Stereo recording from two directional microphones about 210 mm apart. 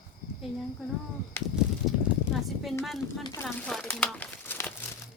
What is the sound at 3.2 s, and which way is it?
Speech, 20° left (ahead or behind).